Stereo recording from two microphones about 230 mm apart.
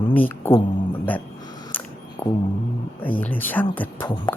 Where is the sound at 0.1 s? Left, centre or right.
Centre.